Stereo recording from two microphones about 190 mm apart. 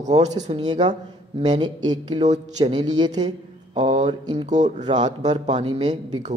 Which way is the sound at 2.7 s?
25° right (ahead or behind).